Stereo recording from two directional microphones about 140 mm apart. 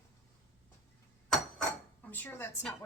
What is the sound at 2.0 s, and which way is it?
Speech, 10° left (ahead or behind).